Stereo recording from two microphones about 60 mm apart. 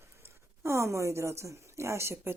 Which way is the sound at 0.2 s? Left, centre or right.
Right.